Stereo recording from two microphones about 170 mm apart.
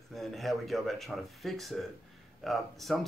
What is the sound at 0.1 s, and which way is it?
Speech, centre (ahead or behind).